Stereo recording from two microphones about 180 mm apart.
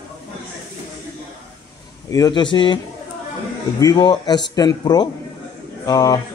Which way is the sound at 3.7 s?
20° left (ahead or behind).